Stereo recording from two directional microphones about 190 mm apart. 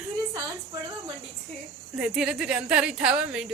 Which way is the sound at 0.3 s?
20° right (ahead or behind).